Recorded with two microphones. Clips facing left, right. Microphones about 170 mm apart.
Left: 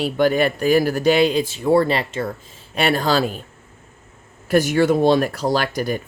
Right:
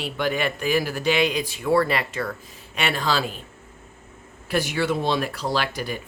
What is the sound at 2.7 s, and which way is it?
Speech, 40° left (ahead or behind).